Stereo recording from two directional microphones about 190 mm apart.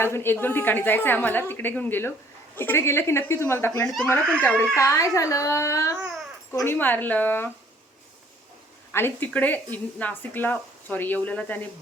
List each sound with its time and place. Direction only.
0.0 s speech: 10° left (ahead or behind)
8.9 s speech: 10° left (ahead or behind)